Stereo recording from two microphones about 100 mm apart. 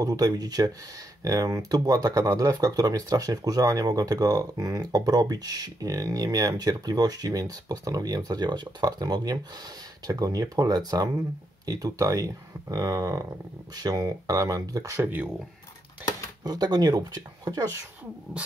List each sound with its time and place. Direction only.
0.0 s speech: 40° right (ahead or behind); by 15.3 s 20° right (ahead or behind)
16.4 s speech: 45° right (ahead or behind)